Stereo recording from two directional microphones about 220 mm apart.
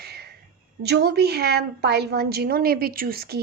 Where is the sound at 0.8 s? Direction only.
50° right (ahead or behind).